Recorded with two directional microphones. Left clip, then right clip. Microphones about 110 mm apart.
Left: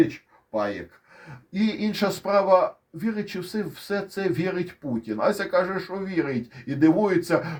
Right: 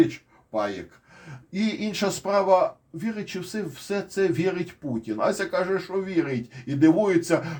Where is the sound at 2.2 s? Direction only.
35° left (ahead or behind).